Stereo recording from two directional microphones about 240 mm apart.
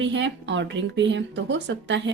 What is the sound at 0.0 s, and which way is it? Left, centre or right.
Speech, right.